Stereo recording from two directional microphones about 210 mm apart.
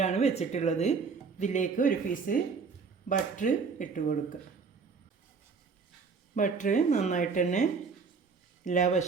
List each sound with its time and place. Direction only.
0.0 s speech: 30° left (ahead or behind)
6.3 s speech: 35° left (ahead or behind)